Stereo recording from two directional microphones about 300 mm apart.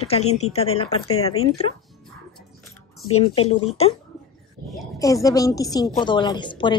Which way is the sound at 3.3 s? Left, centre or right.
Centre.